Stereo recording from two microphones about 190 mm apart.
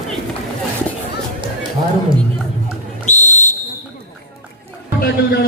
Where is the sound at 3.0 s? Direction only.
40° left (ahead or behind).